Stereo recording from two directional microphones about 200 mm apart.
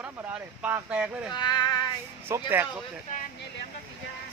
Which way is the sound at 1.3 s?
20° left (ahead or behind).